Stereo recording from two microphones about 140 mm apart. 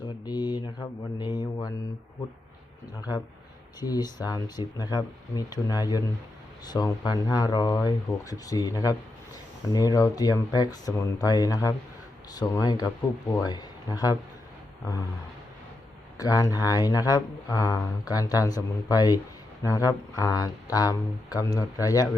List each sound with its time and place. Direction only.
0.3 s mantra: 30° left (ahead or behind)
3.8 s speech: 30° left (ahead or behind)
16.1 s speech: 25° left (ahead or behind)